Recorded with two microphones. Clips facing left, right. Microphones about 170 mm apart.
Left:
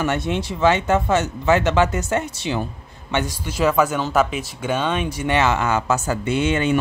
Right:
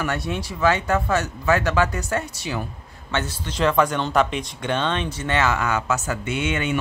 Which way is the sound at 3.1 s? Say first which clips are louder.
Left 3 dB; 15° left (ahead or behind).